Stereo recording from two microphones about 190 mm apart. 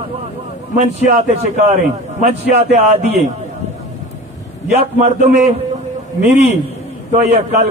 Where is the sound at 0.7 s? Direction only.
35° right (ahead or behind).